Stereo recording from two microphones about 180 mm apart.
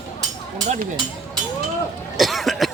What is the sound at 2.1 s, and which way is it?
Cough, centre (ahead or behind).